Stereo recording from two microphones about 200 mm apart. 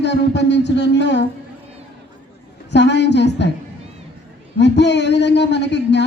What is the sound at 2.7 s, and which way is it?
Speech, 60° left (ahead or behind).